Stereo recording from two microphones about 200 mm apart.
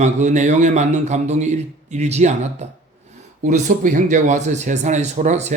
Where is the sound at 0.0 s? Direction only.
35° right (ahead or behind).